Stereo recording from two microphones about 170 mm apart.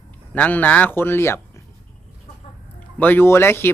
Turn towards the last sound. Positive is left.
turn(degrees=15)  # may be behind; listen again after turning